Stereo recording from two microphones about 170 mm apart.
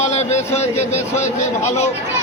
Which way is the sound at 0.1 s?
40° left (ahead or behind).